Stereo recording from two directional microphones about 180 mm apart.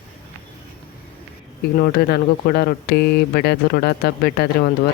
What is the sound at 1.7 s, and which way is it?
Speech, 55° left (ahead or behind).